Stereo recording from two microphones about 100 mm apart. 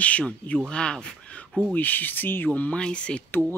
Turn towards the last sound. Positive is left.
turn(degrees=10)  # may be behind; listen again after turning